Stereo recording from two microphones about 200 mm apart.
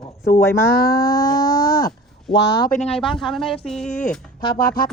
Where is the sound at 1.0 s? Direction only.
15° left (ahead or behind).